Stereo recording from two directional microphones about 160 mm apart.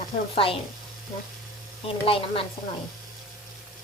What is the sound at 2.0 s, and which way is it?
Music, 35° left (ahead or behind).